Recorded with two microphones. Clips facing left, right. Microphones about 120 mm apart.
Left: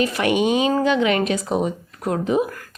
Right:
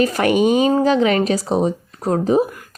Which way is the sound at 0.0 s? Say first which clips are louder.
Right 4 dB; 40° right (ahead or behind).